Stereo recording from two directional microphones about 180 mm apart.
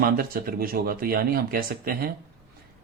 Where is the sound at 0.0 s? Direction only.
55° right (ahead or behind).